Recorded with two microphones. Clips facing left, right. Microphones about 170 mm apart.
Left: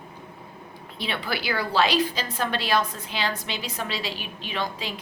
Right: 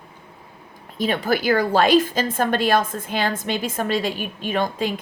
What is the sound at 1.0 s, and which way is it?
Speech, 45° right (ahead or behind).